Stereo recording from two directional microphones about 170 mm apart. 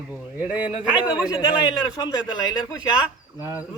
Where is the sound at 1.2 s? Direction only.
25° left (ahead or behind).